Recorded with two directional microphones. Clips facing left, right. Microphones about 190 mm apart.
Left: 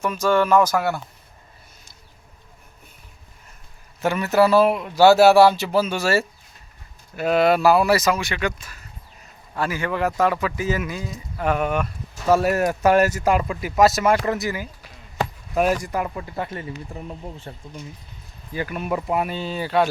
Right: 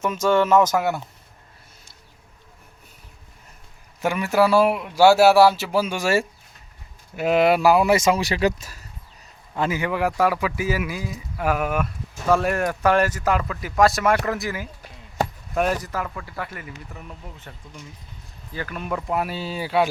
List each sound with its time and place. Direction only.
0.0 s speech: 25° right (ahead or behind)
4.0 s a man's voice: 10° right (ahead or behind); by 8.7 s 40° right (ahead or behind)
9.6 s a man's voice: 20° right (ahead or behind); by 17.8 s 30° left (ahead or behind)
18.5 s speech: 10° left (ahead or behind); by 19.9 s 10° right (ahead or behind)